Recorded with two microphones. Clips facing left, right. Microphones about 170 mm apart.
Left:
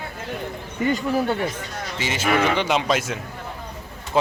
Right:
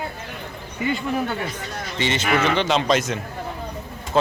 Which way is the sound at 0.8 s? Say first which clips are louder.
Left 2 dB; 45° left (ahead or behind).